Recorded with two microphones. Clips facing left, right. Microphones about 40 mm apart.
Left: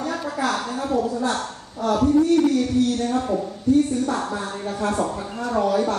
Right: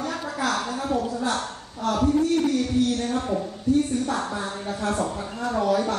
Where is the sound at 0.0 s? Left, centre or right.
Centre.